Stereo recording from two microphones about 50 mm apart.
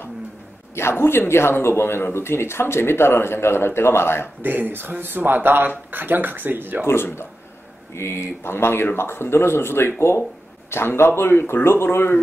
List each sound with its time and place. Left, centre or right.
0.7 s speech: left
4.4 s speech: right
6.9 s speech: left